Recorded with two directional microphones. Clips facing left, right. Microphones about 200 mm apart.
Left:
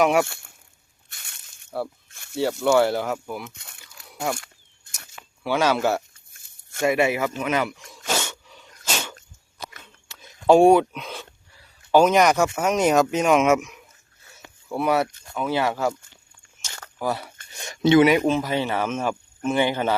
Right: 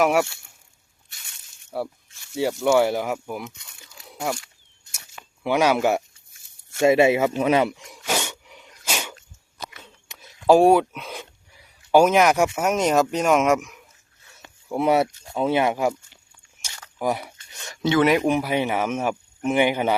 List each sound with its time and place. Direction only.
0.0 s speech: 5° right (ahead or behind)
1.7 s speech: 10° right (ahead or behind)
2.0 s snake: 55° left (ahead or behind)
2.3 s speech: 10° right (ahead or behind)
5.4 s speech: 15° right (ahead or behind)
6.8 s speech: 25° right (ahead or behind)
7.3 s sneeze: 30° right (ahead or behind); by 9.1 s 10° right (ahead or behind)
10.2 s speech: 5° right (ahead or behind)
11.1 s speech: 15° right (ahead or behind); by 13.8 s centre (ahead or behind)
14.7 s speech: 20° right (ahead or behind)
17.0 s speech: 15° right (ahead or behind)
17.7 s speech: 20° left (ahead or behind)
18.0 s speech: centre (ahead or behind)
18.3 s speech: 15° right (ahead or behind)